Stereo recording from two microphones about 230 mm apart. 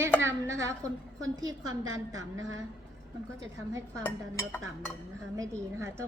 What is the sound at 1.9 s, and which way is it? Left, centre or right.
Speech, right.